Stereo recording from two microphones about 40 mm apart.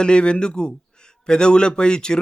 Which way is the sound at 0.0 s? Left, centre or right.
Left.